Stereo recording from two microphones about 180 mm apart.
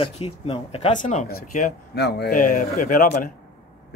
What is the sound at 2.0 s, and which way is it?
A man's voice, 70° left (ahead or behind).